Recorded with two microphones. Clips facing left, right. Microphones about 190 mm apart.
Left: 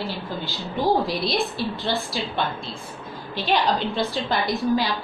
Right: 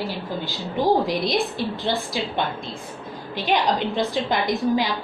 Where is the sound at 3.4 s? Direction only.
15° right (ahead or behind).